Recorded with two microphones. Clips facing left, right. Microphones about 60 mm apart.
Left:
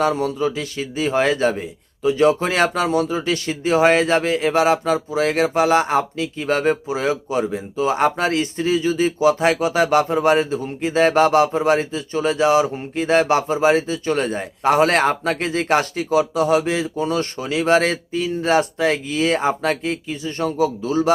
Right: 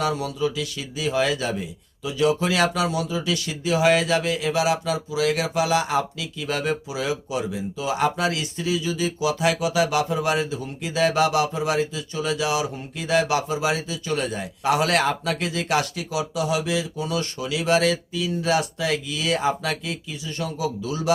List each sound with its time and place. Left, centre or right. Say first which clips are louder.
0.0 s a man's voice: left 5 dB; left